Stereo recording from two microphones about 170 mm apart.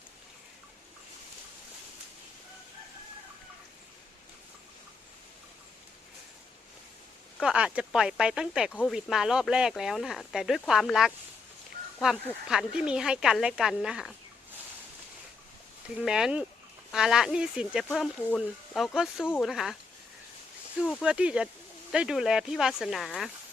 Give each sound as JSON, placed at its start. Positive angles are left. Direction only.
{"t": 7.4, "sound": "speech", "side_deg": -5}
{"t": 16.0, "sound": "speech", "side_deg": -5}
{"t": 20.8, "sound": "speech", "side_deg": 0}